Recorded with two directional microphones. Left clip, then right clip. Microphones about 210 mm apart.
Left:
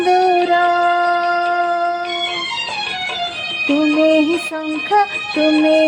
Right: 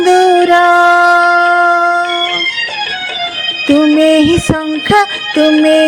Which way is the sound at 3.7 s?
30° right (ahead or behind).